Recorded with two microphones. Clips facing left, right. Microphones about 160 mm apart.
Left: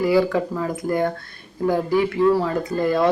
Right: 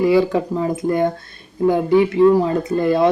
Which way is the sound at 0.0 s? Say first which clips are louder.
Right 3 dB; 25° right (ahead or behind).